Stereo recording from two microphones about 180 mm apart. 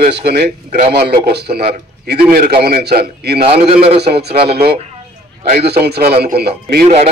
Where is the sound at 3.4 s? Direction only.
30° right (ahead or behind).